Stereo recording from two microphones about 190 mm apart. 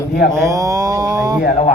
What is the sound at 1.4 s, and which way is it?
Speech, 40° left (ahead or behind).